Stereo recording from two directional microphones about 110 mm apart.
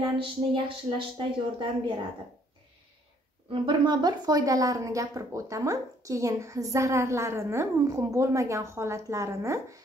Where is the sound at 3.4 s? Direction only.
50° right (ahead or behind).